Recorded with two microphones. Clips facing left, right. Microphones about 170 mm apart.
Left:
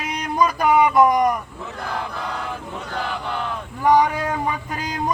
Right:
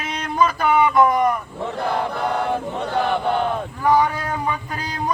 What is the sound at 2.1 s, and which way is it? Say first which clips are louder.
Chant: right 7 dB; 65° right (ahead or behind).